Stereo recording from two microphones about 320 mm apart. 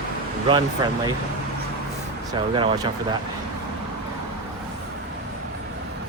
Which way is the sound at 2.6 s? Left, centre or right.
Centre.